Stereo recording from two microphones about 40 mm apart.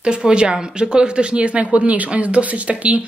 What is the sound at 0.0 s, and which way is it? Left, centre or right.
Speech, right.